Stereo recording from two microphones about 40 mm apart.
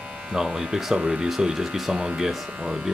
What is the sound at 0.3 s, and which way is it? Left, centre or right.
Speech, centre.